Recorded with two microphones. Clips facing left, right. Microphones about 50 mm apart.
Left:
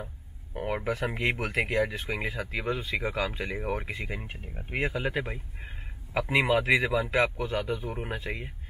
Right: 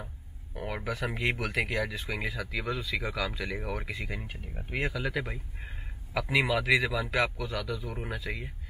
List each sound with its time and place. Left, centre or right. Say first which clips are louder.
0.8 s speech: even; left